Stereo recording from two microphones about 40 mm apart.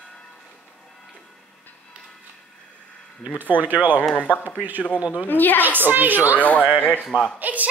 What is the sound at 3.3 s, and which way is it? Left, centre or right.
Speech, right.